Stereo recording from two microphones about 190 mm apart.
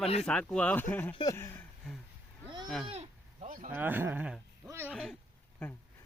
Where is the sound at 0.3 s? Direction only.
5° left (ahead or behind).